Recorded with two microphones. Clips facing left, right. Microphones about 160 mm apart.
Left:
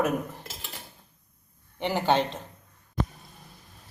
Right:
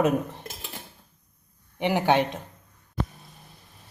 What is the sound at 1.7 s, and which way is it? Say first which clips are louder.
Speech: right 2 dB; 15° right (ahead or behind).